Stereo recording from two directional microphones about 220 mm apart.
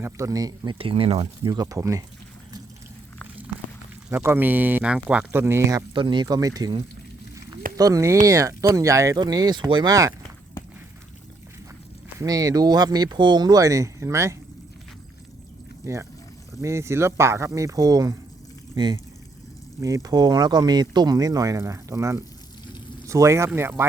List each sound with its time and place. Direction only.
0.0 s speech: 15° right (ahead or behind)
4.1 s speech: 10° right (ahead or behind)
12.2 s speech: 15° right (ahead or behind)
16.6 s speech: 15° right (ahead or behind)